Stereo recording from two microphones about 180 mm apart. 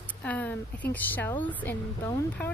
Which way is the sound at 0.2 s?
10° left (ahead or behind).